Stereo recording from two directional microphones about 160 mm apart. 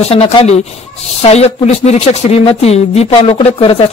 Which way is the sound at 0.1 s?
40° left (ahead or behind).